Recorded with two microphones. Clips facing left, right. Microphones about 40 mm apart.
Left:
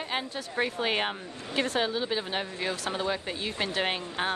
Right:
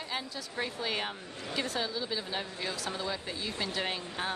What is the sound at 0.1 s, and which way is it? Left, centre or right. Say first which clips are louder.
A woman's voice: left 4 dB; left.